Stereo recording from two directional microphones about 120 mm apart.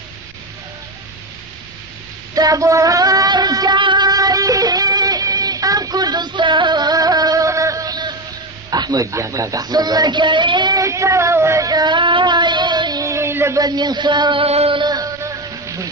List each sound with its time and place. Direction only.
2.3 s music: 30° right (ahead or behind)
8.6 s speech: 35° right (ahead or behind)
10.8 s child singing: 25° right (ahead or behind)
13.0 s music: 25° right (ahead or behind)
13.6 s speech: 35° right (ahead or behind)
14.5 s music: 60° right (ahead or behind)
14.8 s music: 35° right (ahead or behind)
15.1 s music: 25° right (ahead or behind)